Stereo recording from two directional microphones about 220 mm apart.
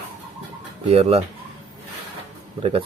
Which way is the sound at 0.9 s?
30° right (ahead or behind).